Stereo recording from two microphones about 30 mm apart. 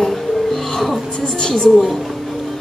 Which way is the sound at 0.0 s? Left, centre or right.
Centre.